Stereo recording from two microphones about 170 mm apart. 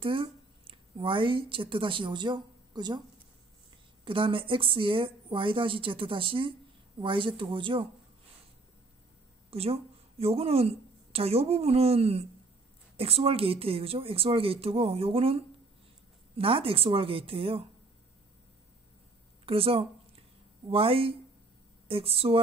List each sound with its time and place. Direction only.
0.0 s speech: 30° right (ahead or behind)
4.0 s speech: 30° right (ahead or behind)
9.5 s a woman's voice: 35° right (ahead or behind)
19.4 s speech: 35° right (ahead or behind)